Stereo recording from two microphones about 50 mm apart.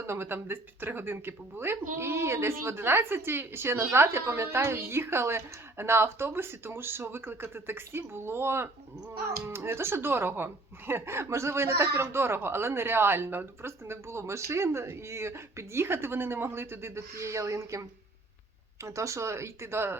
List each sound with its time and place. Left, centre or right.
0.0 s speech: right